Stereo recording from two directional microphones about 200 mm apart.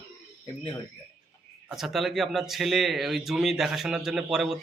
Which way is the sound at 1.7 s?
Centre (ahead or behind).